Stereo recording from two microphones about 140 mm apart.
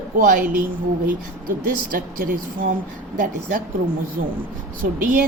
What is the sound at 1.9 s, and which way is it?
Speech, 75° right (ahead or behind).